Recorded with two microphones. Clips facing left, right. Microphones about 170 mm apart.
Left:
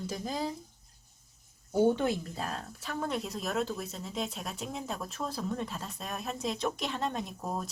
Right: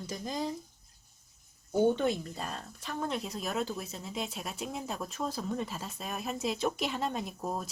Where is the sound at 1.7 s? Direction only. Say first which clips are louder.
Even; 5° left (ahead or behind).